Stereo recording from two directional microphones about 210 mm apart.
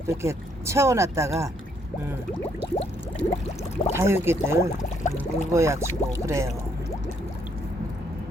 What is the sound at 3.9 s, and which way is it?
Speech, 10° right (ahead or behind).